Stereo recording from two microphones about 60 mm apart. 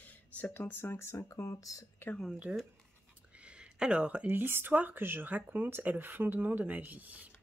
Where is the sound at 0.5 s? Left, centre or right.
Left.